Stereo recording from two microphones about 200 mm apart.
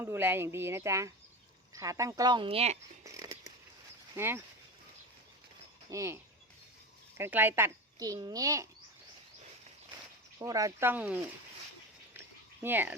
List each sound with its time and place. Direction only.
0.0 s a child's voice: 10° right (ahead or behind); by 2.7 s 30° right (ahead or behind)
3.0 s a sound: 15° right (ahead or behind)
4.1 s a child's voice: 10° right (ahead or behind)
5.9 s a child's voice: 15° right (ahead or behind)
7.2 s a child's voice: 10° right (ahead or behind)
10.3 s a child's voice: 15° right (ahead or behind)
12.6 s a child's voice: 10° right (ahead or behind)